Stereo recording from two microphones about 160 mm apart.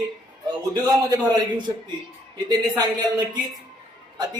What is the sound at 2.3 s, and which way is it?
Speech, 25° right (ahead or behind).